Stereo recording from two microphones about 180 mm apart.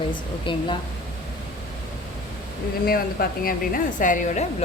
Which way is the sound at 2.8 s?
55° left (ahead or behind).